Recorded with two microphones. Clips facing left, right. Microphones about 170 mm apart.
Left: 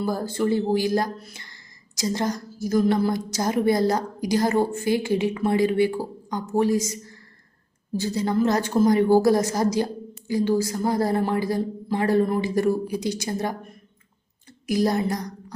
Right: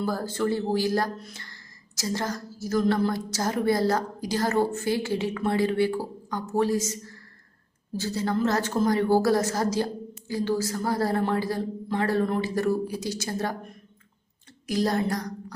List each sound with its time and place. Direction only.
0.0 s a woman's voice: 15° left (ahead or behind)
14.7 s a woman's voice: 10° left (ahead or behind)